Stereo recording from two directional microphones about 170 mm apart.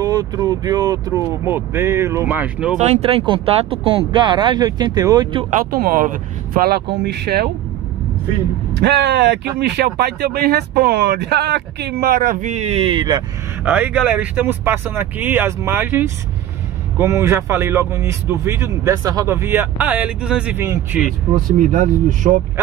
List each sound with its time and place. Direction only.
0.0 s speech: 20° right (ahead or behind); by 2.8 s 5° right (ahead or behind)
2.8 s speech: 40° right (ahead or behind)
5.5 s speech: 55° right (ahead or behind)
8.8 s speech: 75° right (ahead or behind); by 13.2 s 25° right (ahead or behind)
13.7 s speech: 10° right (ahead or behind)
21.5 s speech: 50° right (ahead or behind)